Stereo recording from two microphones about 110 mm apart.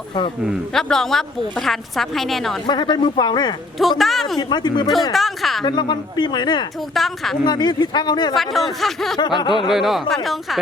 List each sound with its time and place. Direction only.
0.7 s a woman's voice: 5° left (ahead or behind)
2.6 s speech: 45° left (ahead or behind)
3.8 s a woman's voice: centre (ahead or behind)
4.4 s speech: 40° left (ahead or behind)
5.1 s a woman's voice: centre (ahead or behind)
5.6 s speech: 45° left (ahead or behind)
6.9 s a woman's voice: centre (ahead or behind)
7.4 s speech: 40° left (ahead or behind)
8.4 s a woman's voice: centre (ahead or behind)
9.1 s speech: 40° left (ahead or behind)
9.7 s a woman's voice: centre (ahead or behind)